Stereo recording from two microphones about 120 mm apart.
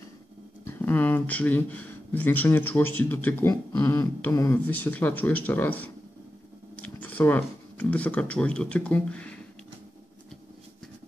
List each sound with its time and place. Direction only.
0.7 s speech: 15° left (ahead or behind)
3.7 s a sound: 25° left (ahead or behind)
4.6 s speech: 15° left (ahead or behind)